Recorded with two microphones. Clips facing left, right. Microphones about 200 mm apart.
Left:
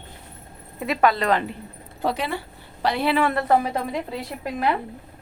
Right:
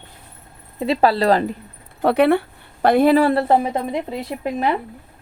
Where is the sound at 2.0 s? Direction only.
60° right (ahead or behind).